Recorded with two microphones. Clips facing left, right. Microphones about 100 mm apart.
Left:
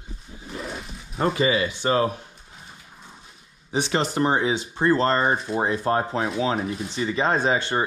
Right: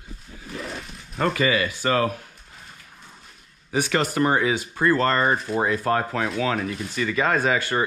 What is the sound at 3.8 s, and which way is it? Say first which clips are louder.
Speech: right 1 dB; 25° left (ahead or behind).